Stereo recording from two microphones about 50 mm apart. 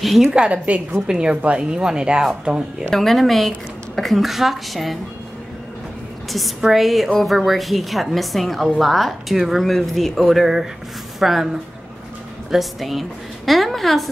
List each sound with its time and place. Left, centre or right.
0.0 s a woman's voice: centre
0.5 s speech: right
1.0 s a woman's voice: centre
2.9 s a woman's voice: centre
6.3 s a woman's voice: centre
12.4 s a woman's voice: centre